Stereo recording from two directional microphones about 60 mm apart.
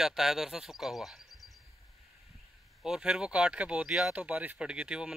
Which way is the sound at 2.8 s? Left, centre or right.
Centre.